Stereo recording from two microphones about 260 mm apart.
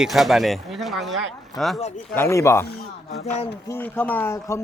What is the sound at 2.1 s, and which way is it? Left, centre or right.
Speech, centre.